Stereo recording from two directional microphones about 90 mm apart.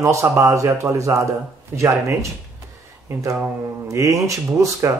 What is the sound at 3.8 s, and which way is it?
Speech, 35° right (ahead or behind).